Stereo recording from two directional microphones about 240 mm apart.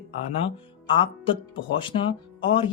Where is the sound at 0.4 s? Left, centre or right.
Left.